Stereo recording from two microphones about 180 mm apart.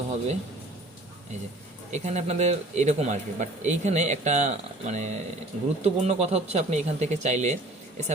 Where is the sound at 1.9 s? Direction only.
40° right (ahead or behind).